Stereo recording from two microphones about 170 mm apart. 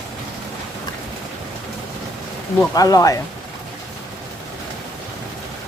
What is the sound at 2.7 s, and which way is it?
Speech, 20° left (ahead or behind).